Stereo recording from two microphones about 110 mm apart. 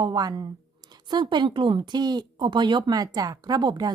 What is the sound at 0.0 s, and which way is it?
A woman's voice, 40° right (ahead or behind).